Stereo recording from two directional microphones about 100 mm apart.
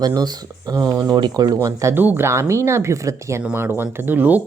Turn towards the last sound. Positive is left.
turn(degrees=-20)  # may be behind; listen again after turning